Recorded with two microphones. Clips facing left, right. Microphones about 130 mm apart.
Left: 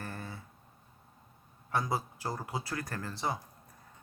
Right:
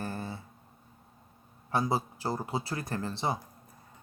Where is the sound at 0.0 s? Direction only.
25° right (ahead or behind).